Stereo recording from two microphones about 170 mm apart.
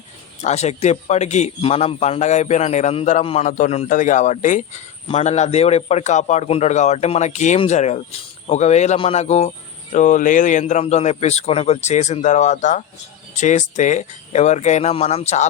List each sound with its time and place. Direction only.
0.4 s a man's voice: 40° left (ahead or behind)